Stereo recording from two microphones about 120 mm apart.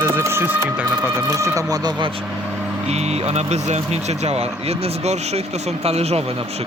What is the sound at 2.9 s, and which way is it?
Speech, 65° right (ahead or behind).